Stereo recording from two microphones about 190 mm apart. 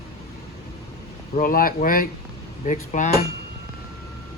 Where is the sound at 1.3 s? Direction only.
50° left (ahead or behind).